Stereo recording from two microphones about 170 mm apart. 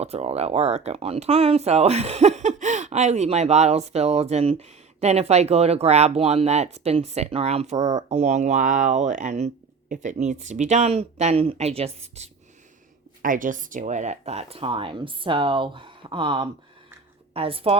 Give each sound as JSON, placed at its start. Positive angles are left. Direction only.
{"t": 0.0, "sound": "speech", "side_deg": -40}
{"t": 13.2, "sound": "speech", "side_deg": -50}